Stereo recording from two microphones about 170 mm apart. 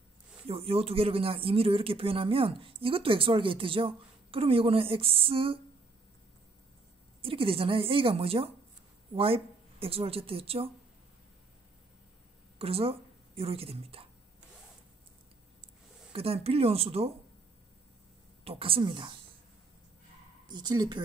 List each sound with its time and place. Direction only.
0.5 s speech: 35° right (ahead or behind)
7.2 s speech: 35° right (ahead or behind)
12.5 s speech: 35° right (ahead or behind)
16.1 s speech: 35° right (ahead or behind)
18.4 s speech: 35° right (ahead or behind)
20.4 s speech: 25° right (ahead or behind)